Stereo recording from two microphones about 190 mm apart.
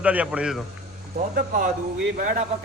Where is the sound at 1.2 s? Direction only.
45° right (ahead or behind).